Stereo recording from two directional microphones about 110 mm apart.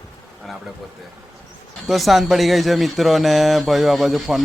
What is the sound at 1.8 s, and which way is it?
Speech, centre (ahead or behind).